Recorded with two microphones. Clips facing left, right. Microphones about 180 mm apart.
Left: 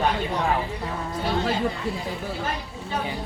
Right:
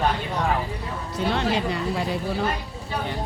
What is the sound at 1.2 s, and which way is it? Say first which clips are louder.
Speech: right 1 dB; 75° right (ahead or behind).